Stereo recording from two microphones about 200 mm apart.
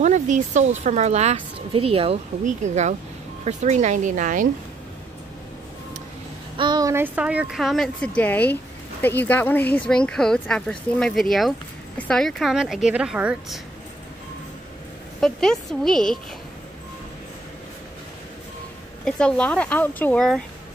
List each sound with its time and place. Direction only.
0.0 s a woman's voice: 35° right (ahead or behind)
6.5 s speech: 20° right (ahead or behind); by 13.6 s 5° right (ahead or behind)
15.1 s speech: centre (ahead or behind)
19.0 s speech: 5° left (ahead or behind)